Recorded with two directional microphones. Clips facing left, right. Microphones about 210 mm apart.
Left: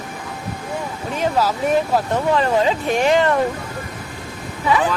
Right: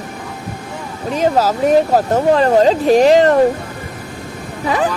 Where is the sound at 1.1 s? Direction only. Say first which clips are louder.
Right 5 dB; 40° right (ahead or behind).